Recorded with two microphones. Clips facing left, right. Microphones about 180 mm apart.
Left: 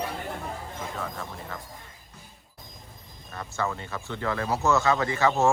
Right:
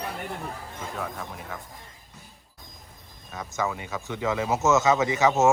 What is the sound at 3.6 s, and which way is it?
Speech, 10° right (ahead or behind).